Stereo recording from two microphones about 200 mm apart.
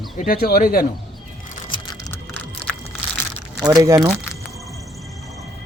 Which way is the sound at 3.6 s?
15° right (ahead or behind).